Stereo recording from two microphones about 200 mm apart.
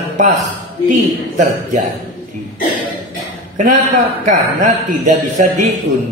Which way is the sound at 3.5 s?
40° right (ahead or behind).